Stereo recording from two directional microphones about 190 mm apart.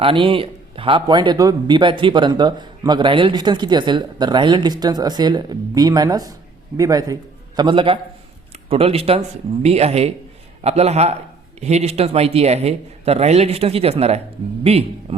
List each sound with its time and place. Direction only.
0.0 s a man's voice: 30° right (ahead or behind)